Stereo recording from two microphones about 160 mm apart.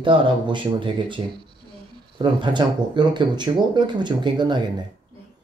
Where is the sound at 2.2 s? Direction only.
30° right (ahead or behind).